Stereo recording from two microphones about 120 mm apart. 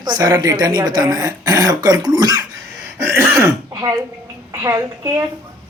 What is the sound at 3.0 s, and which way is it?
Throat clearing, 20° right (ahead or behind).